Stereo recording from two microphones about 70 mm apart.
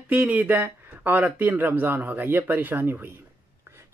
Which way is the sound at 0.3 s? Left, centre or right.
Right.